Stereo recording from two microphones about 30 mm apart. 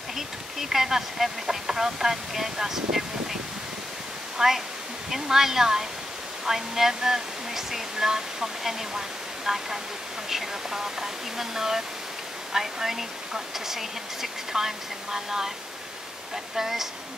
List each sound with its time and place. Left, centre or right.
0.6 s speech: centre
4.4 s speech: right
5.1 s speech: centre
16.5 s speech: centre